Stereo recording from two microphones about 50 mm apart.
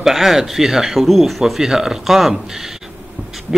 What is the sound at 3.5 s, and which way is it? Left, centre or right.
Owl, centre.